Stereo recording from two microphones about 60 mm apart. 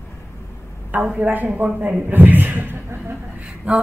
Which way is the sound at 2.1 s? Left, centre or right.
Right.